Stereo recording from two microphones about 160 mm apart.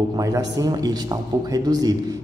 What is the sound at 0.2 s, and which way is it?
A man's voice, 25° right (ahead or behind).